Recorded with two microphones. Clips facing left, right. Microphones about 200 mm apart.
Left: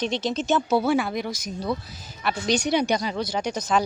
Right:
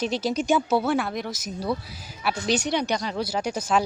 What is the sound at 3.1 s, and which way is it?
Speech, 5° right (ahead or behind).